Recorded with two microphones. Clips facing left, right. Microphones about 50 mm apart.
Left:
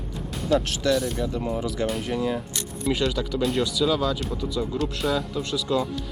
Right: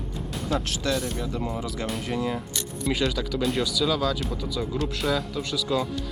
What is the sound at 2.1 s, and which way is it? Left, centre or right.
Speech, right.